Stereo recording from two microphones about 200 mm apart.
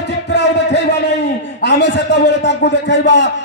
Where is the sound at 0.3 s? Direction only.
55° left (ahead or behind).